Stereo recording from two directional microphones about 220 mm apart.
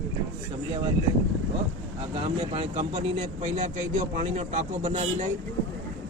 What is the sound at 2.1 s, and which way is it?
Speech, 25° right (ahead or behind).